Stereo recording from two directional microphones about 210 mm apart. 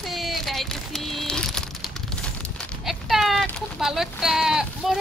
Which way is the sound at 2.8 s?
Centre (ahead or behind).